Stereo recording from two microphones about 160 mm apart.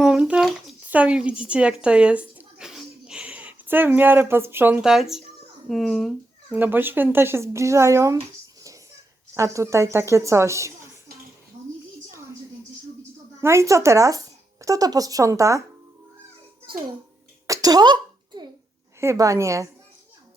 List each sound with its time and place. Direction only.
0.0 s a sound: 5° right (ahead or behind)
1.8 s speech: 5° right (ahead or behind)
6.6 s speech: 15° right (ahead or behind)
9.3 s speech: 20° right (ahead or behind)
13.4 s speech: 15° right (ahead or behind)
17.4 s a sound: 20° right (ahead or behind)
18.9 s a woman's voice: 20° right (ahead or behind)